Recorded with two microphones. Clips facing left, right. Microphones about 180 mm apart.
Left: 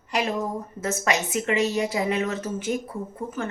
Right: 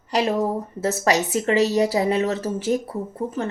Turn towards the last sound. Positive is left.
turn(degrees=-35)  # may be behind; listen again after turning